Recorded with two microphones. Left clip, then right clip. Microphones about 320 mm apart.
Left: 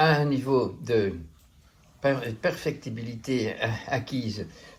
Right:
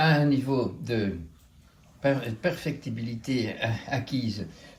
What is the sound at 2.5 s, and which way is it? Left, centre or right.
Speech, centre.